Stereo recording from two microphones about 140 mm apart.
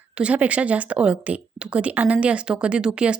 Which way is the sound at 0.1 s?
10° right (ahead or behind).